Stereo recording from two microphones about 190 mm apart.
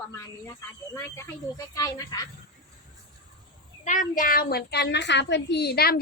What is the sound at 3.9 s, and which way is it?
A woman's voice, 45° left (ahead or behind).